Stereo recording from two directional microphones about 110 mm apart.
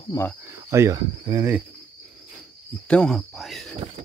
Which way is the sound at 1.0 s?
45° right (ahead or behind).